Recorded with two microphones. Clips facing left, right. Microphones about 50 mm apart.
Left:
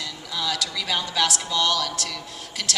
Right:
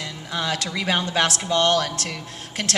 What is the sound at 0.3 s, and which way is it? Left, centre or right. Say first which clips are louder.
A woman's voice: right 2 dB; right.